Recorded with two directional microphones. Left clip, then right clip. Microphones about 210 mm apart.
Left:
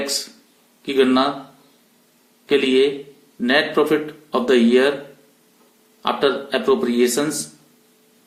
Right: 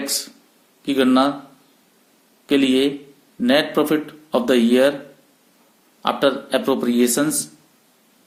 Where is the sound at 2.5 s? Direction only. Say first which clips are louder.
Left 2 dB; 40° right (ahead or behind).